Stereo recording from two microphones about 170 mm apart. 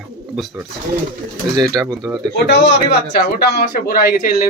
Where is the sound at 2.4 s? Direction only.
90° left; by 4.3 s 60° left (ahead or behind).